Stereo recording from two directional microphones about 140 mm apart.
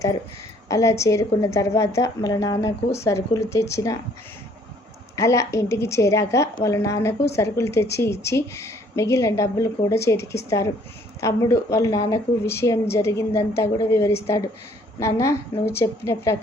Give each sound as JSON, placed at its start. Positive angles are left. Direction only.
{"t": 0.7, "sound": "speech", "side_deg": 20}
{"t": 5.1, "sound": "speech", "side_deg": 20}